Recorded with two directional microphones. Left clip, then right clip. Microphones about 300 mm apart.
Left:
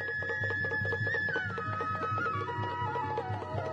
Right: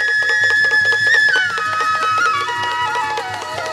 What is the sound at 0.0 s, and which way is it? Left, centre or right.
Music, centre.